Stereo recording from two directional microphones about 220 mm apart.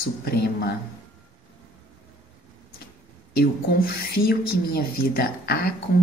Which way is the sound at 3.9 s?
50° left (ahead or behind).